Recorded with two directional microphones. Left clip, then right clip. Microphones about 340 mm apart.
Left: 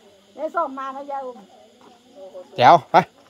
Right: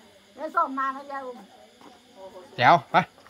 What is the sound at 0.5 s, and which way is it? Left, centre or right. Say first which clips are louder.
Speech: right 1 dB; left.